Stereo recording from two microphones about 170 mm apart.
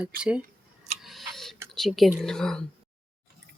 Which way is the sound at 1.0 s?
Centre (ahead or behind).